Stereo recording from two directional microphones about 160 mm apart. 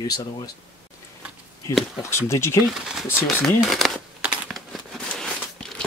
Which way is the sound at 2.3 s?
15° left (ahead or behind).